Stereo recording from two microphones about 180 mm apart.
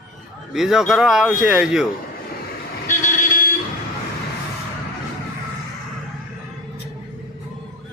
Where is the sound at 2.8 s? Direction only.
45° left (ahead or behind).